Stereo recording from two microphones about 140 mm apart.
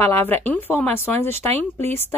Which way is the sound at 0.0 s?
15° left (ahead or behind).